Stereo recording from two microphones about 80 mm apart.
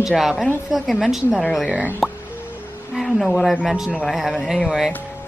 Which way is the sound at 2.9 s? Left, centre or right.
Centre.